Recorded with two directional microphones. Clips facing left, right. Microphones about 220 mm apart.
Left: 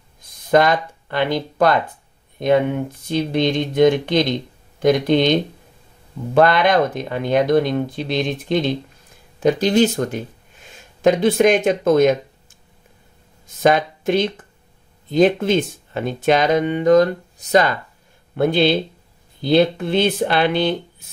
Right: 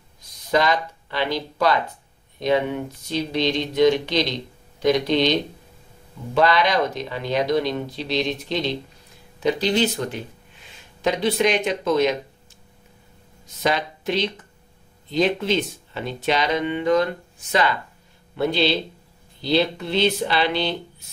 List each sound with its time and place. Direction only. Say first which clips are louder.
0.2 s speech: left 6 dB; 50° left (ahead or behind)
13.6 s speech: left 7 dB; 50° left (ahead or behind)
18.3 s speech: left 5 dB; 50° left (ahead or behind)